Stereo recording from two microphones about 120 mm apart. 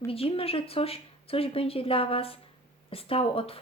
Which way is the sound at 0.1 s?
50° left (ahead or behind).